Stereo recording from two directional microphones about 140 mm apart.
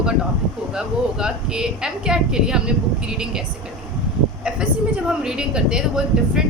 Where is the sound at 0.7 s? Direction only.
5° right (ahead or behind).